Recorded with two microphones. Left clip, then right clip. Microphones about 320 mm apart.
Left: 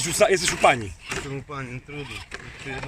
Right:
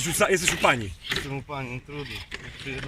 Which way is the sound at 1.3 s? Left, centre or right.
Centre.